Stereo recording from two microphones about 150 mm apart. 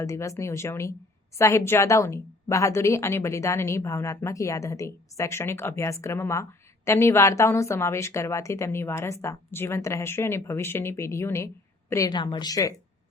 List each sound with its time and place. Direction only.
0.0 s a woman's voice: 20° left (ahead or behind)